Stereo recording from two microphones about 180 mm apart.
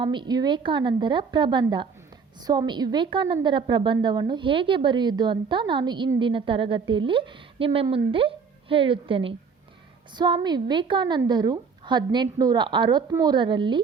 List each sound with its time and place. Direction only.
0.0 s a woman's voice: 25° right (ahead or behind)